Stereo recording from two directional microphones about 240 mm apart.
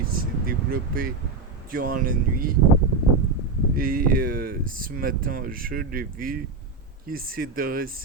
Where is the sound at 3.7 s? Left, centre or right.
Right.